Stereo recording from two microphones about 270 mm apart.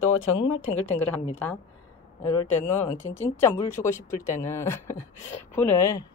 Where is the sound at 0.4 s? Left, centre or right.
Centre.